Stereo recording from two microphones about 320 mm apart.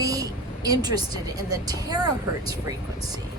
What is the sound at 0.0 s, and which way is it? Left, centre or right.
A woman's voice, centre.